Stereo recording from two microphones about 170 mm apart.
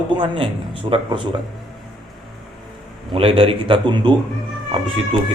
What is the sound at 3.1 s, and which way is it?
A man's voice, 30° right (ahead or behind).